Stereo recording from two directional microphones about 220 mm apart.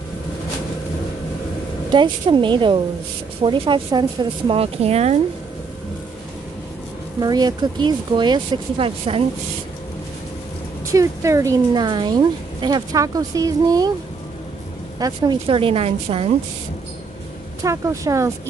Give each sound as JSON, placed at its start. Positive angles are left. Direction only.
{"t": 1.9, "sound": "speech", "side_deg": -20}
{"t": 7.2, "sound": "speech", "side_deg": -20}
{"t": 10.9, "sound": "speech", "side_deg": -15}
{"t": 15.0, "sound": "speech", "side_deg": -20}
{"t": 17.6, "sound": "speech", "side_deg": -15}